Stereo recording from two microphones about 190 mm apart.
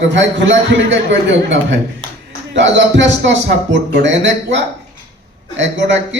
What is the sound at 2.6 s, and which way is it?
A man's voice, 70° right (ahead or behind).